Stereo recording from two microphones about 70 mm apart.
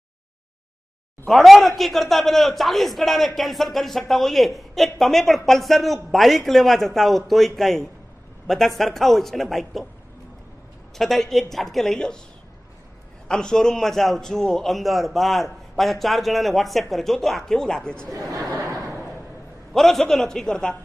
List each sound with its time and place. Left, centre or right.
1.2 s a man's voice: centre
11.0 s a man's voice: centre
13.3 s a man's voice: centre
18.2 s speech: right
19.7 s a man's voice: centre